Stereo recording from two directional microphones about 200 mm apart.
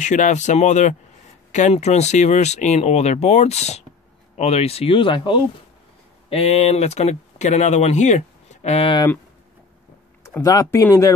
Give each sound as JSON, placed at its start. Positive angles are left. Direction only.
{"t": 0.0, "sound": "speech", "side_deg": 35}
{"t": 10.2, "sound": "speech", "side_deg": 15}